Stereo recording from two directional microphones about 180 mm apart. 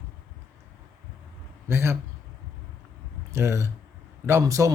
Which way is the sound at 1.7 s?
15° right (ahead or behind).